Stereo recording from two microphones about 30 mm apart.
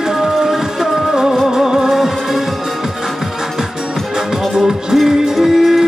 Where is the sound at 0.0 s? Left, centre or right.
Centre.